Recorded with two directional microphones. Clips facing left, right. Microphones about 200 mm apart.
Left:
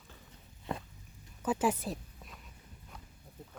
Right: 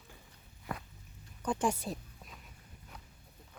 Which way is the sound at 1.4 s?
5° left (ahead or behind).